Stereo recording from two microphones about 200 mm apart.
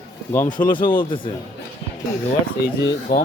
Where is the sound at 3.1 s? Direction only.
50° left (ahead or behind).